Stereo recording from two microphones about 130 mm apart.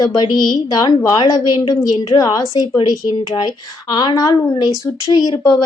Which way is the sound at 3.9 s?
30° left (ahead or behind).